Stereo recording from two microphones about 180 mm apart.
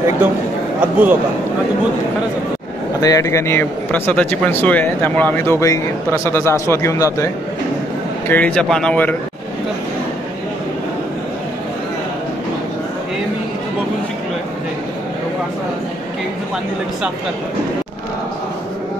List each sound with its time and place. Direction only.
0.7 s a man's voice: 10° right (ahead or behind)
3.0 s speech: 20° left (ahead or behind)
8.3 s speech: 10° left (ahead or behind)